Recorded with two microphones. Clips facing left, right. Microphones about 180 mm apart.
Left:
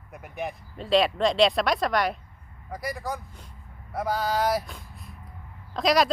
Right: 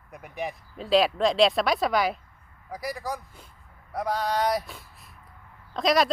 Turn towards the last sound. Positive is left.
turn(degrees=0)  # may be behind; listen again after turning